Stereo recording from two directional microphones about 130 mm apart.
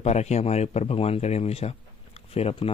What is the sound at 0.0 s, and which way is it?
Speech, 60° left (ahead or behind).